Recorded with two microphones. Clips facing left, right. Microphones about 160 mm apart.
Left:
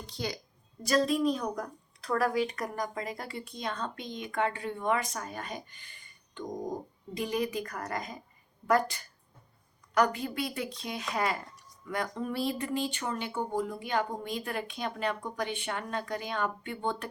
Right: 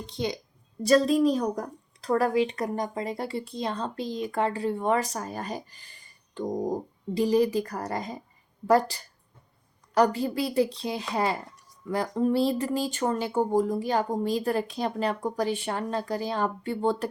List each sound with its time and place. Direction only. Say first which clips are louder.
0.0 s a woman's voice: right 6 dB; 25° right (ahead or behind)
0.8 s a woman's voice: right 6 dB; 35° right (ahead or behind)